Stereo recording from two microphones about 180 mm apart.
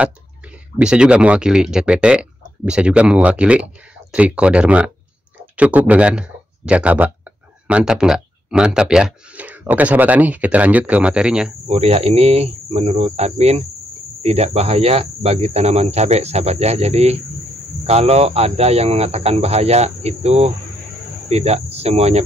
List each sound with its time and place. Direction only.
0.7 s speech: 5° right (ahead or behind)
11.6 s speech: 35° right (ahead or behind)